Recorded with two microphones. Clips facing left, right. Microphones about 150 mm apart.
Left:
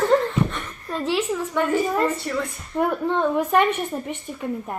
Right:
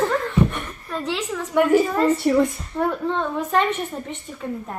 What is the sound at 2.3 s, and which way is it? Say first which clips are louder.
Speech: right 9 dB; 15° right (ahead or behind).